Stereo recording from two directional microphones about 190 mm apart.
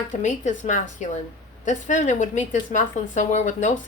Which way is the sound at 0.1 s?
40° left (ahead or behind).